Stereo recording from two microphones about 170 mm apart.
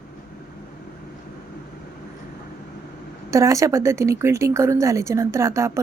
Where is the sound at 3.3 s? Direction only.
20° right (ahead or behind).